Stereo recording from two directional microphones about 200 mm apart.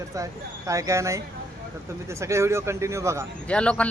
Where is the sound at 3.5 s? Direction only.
5° left (ahead or behind).